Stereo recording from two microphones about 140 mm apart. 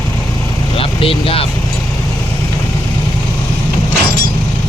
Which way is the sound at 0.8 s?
40° left (ahead or behind).